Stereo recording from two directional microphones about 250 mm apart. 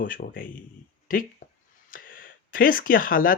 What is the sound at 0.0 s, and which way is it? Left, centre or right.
Speech, left.